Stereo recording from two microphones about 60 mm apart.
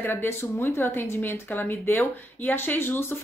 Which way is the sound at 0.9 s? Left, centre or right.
Left.